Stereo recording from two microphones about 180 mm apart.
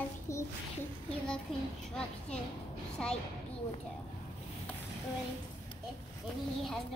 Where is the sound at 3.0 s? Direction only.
5° left (ahead or behind).